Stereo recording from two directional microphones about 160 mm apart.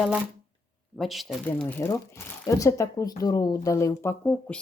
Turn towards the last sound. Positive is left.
turn(degrees=5)  # may be behind; listen again after turning